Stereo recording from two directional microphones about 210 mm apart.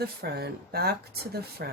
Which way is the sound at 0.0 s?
50° right (ahead or behind).